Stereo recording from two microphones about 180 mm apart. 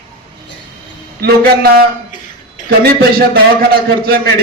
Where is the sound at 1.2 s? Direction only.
60° right (ahead or behind).